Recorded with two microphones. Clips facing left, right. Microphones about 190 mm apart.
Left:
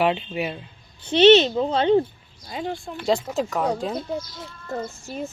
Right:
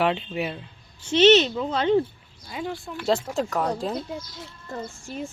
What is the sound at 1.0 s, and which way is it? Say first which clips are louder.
Speech: left 3 dB; 35° left (ahead or behind).